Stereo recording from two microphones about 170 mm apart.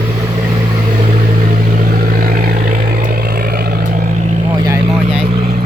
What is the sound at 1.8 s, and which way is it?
Vehicle, 60° right (ahead or behind).